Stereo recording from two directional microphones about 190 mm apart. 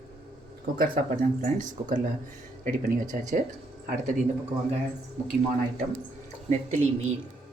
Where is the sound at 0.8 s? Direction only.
45° right (ahead or behind).